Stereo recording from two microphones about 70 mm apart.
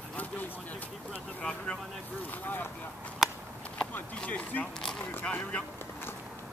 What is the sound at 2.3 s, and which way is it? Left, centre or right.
Speech, left.